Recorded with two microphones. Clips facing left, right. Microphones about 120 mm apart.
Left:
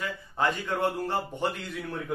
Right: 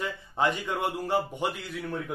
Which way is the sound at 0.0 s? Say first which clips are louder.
Right 1 dB; 15° right (ahead or behind).